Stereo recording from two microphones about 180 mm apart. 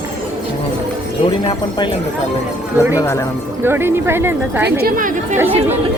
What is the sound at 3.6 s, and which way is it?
Speech, 10° right (ahead or behind).